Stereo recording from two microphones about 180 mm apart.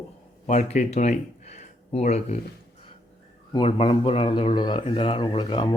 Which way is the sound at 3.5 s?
30° left (ahead or behind).